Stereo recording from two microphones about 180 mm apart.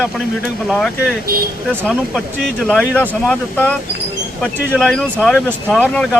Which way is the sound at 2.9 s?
5° left (ahead or behind).